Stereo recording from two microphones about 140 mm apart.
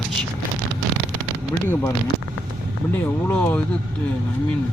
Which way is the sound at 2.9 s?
15° left (ahead or behind).